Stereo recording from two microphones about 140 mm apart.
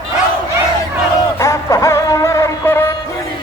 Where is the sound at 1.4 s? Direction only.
20° left (ahead or behind).